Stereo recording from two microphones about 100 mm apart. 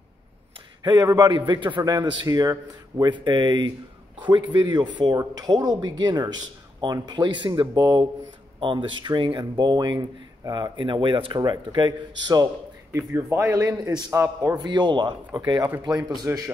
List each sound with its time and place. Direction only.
0.8 s a man's voice: 40° right (ahead or behind)
3.1 s a man's voice: 50° right (ahead or behind)
7.7 s speech: 40° right (ahead or behind)
8.5 s a man's voice: 55° right (ahead or behind)
11.3 s a man's voice: 45° right (ahead or behind)
12.9 s a man's voice: 25° right (ahead or behind)
14.6 s a man's voice: 45° right (ahead or behind)
16.3 s a man's voice: 25° right (ahead or behind)